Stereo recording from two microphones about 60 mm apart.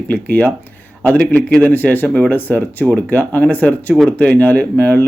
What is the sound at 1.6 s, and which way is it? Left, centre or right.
Speech, left.